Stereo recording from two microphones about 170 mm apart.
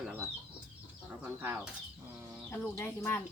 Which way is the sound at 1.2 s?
10° right (ahead or behind).